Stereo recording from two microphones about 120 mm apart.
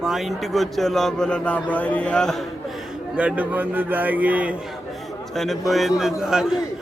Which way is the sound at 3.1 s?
10° right (ahead or behind).